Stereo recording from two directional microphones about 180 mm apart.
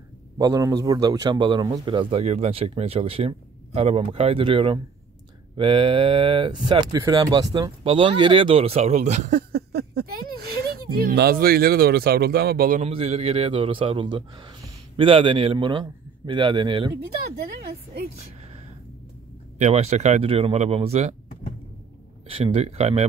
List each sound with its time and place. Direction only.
0.4 s a man's voice: 20° right (ahead or behind); by 9.4 s 40° right (ahead or behind)
9.5 s speech: 60° right (ahead or behind)
12.8 s a man's voice: 35° right (ahead or behind)
19.6 s speech: 35° right (ahead or behind)
22.3 s speech: 35° right (ahead or behind)